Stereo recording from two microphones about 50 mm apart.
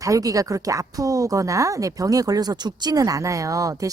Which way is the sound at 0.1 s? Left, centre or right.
Right.